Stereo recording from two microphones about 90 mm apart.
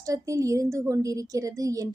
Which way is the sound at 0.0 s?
40° right (ahead or behind).